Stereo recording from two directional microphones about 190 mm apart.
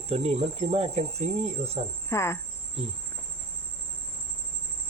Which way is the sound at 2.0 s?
15° left (ahead or behind).